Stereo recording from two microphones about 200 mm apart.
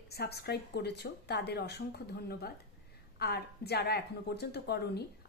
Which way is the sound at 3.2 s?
55° left (ahead or behind).